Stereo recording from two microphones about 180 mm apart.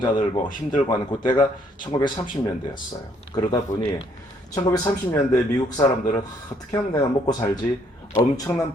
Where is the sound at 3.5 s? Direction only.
30° left (ahead or behind).